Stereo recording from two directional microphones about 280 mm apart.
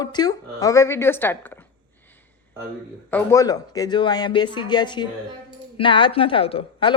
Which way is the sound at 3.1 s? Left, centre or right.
Centre.